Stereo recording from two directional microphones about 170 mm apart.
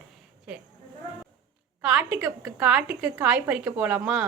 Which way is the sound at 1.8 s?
5° right (ahead or behind).